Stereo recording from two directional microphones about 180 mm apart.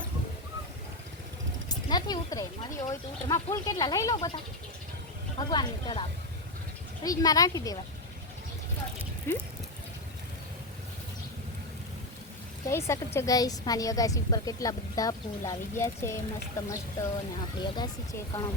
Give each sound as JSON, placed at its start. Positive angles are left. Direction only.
{"t": 1.7, "sound": "a sound", "side_deg": 20}
{"t": 3.2, "sound": "a woman's voice", "side_deg": 20}
{"t": 5.4, "sound": "a woman's voice", "side_deg": 25}
{"t": 9.3, "sound": "speech", "side_deg": 15}
{"t": 12.6, "sound": "a woman's voice", "side_deg": 15}